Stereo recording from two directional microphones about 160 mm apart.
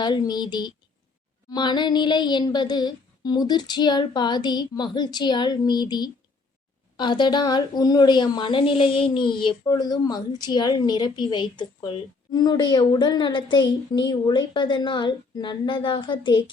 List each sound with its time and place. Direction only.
0.0 s speech: 25° left (ahead or behind)